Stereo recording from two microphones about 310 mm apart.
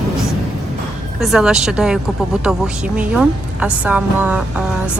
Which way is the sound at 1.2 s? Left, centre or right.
Centre.